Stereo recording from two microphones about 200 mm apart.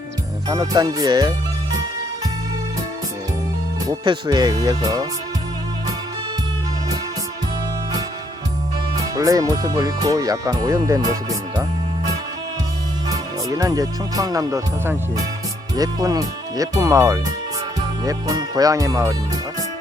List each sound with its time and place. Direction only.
0.4 s speech: 20° right (ahead or behind)
3.8 s speech: 20° right (ahead or behind)
9.0 s speech: 20° right (ahead or behind)
13.1 s speech: 20° right (ahead or behind)